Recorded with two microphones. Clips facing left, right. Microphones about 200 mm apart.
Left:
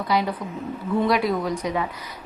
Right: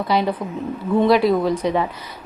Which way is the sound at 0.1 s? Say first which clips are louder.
Right 3 dB; 25° right (ahead or behind).